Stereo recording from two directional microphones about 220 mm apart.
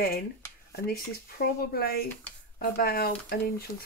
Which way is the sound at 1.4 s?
45° left (ahead or behind).